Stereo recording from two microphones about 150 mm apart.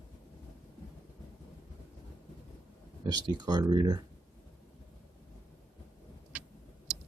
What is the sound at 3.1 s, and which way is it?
Speech, 25° right (ahead or behind).